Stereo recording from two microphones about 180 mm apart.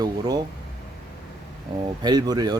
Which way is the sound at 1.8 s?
25° right (ahead or behind).